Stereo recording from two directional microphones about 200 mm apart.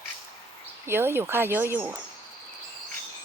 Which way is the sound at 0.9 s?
10° right (ahead or behind).